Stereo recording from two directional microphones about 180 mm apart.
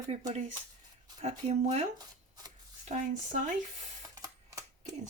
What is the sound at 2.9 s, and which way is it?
Speech, 45° right (ahead or behind).